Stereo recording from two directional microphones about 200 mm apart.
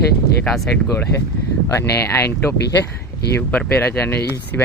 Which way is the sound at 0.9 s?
15° left (ahead or behind).